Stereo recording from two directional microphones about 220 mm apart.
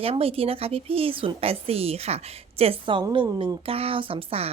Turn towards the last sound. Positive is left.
turn(degrees=-25)  # may be behind; listen again after turning